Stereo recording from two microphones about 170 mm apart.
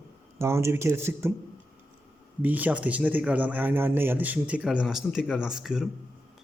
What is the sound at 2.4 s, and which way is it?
Speech, 10° right (ahead or behind).